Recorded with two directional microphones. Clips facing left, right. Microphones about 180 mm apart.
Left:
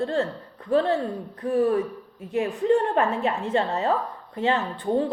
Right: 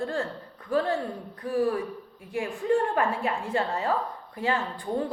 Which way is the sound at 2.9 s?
20° left (ahead or behind).